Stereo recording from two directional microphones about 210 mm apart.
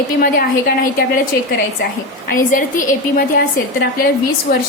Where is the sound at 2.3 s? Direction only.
40° left (ahead or behind).